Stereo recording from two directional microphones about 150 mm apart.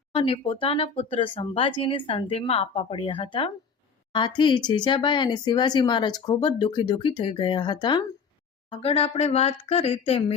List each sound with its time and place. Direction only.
0.1 s speech: 40° left (ahead or behind)
8.7 s speech: 40° left (ahead or behind)